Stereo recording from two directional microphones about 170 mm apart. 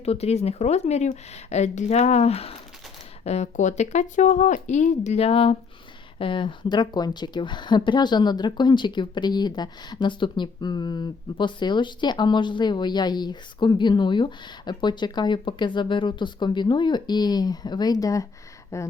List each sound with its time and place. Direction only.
0.0 s a woman's voice: 35° left (ahead or behind); by 18.9 s 15° left (ahead or behind)